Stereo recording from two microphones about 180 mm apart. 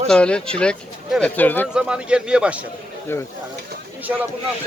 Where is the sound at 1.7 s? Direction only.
5° right (ahead or behind).